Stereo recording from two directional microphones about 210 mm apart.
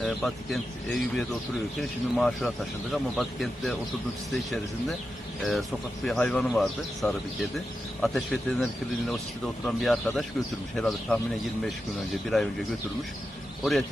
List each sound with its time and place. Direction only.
0.0 s speech: centre (ahead or behind)
12.3 s a man's voice: centre (ahead or behind)